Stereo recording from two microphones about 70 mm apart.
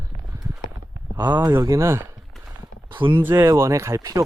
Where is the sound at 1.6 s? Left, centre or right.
Right.